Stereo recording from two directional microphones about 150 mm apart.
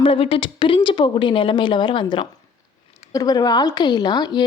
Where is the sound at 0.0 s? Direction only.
35° left (ahead or behind).